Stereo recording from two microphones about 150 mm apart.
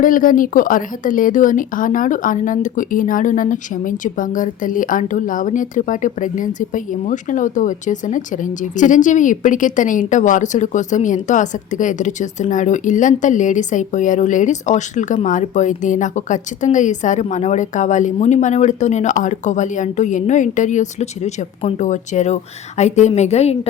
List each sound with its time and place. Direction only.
0.0 s a woman's voice: 65° left (ahead or behind); by 23.6 s 45° left (ahead or behind)